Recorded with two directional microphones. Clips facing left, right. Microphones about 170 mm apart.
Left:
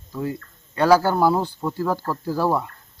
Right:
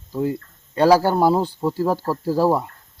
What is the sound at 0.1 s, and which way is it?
Speech, 30° right (ahead or behind).